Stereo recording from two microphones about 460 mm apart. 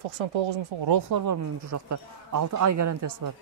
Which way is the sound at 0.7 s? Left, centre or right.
Right.